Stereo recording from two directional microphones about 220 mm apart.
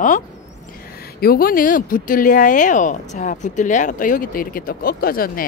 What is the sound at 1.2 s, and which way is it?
Speech, 40° left (ahead or behind).